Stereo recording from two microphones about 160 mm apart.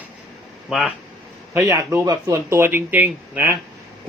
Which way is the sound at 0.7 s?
5° right (ahead or behind).